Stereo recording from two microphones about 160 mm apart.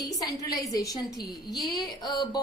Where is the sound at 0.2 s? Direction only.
20° left (ahead or behind).